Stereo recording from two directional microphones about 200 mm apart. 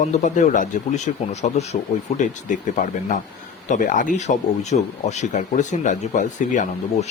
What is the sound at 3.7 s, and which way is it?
Speech, 40° left (ahead or behind).